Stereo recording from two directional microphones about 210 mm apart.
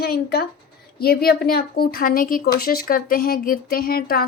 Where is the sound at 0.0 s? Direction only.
50° left (ahead or behind).